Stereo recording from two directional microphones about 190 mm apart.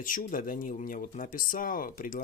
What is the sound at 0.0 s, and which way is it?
Speech, 45° left (ahead or behind).